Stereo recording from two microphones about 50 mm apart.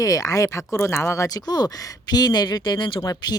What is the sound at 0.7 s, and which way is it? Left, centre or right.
Speech, left.